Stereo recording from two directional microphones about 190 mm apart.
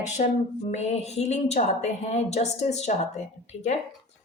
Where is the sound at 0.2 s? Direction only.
40° left (ahead or behind).